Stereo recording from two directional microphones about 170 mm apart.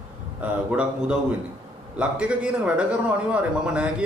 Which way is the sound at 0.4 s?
5° right (ahead or behind).